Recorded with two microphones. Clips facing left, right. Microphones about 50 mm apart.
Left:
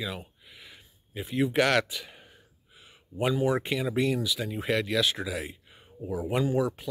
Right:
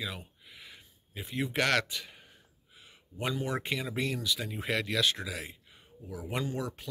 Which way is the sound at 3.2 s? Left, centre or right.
Centre.